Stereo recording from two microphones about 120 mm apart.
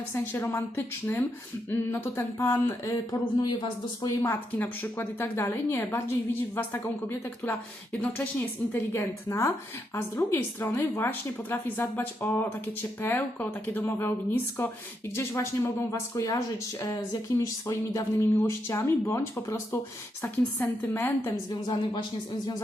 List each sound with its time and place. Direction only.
0.1 s a woman's voice: 20° left (ahead or behind)
4.5 s a woman's voice: 15° left (ahead or behind)
17.4 s a woman's voice: 25° left (ahead or behind)
21.5 s a woman's voice: 40° left (ahead or behind)